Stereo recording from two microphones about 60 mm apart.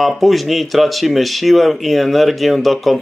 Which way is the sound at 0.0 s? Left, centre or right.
Centre.